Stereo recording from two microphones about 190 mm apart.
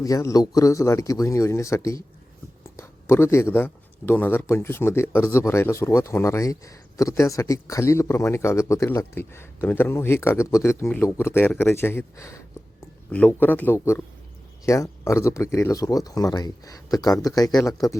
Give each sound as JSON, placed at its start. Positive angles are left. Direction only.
{"t": 0.0, "sound": "speech", "side_deg": 15}